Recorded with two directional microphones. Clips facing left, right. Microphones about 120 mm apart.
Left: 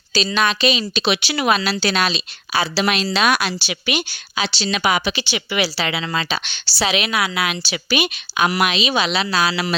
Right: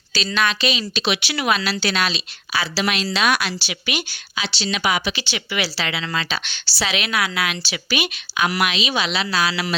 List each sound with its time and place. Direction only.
0.3 s a woman's voice: 20° left (ahead or behind)
4.6 s speech: 45° left (ahead or behind)
5.1 s a woman's voice: 20° left (ahead or behind)